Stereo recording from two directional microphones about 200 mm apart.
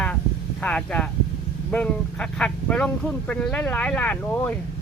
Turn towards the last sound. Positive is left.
turn(degrees=5)  # may be behind; listen again after turning